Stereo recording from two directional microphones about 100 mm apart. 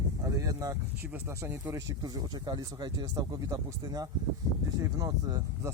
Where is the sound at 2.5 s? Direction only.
40° right (ahead or behind).